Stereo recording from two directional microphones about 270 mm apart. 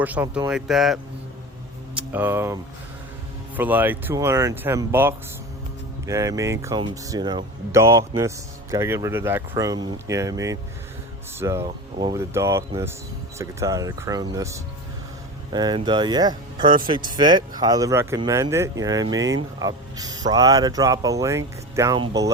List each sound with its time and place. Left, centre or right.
0.0 s speech: centre
2.0 s speech: centre
3.6 s speech: centre
19.2 s speech: right
19.5 s speech: centre